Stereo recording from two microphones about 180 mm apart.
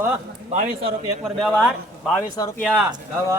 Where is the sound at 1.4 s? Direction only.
5° left (ahead or behind).